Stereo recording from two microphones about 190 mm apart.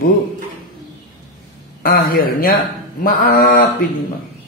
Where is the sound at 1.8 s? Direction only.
50° left (ahead or behind).